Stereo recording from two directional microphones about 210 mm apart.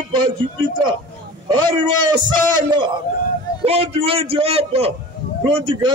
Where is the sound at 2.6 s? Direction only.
20° right (ahead or behind).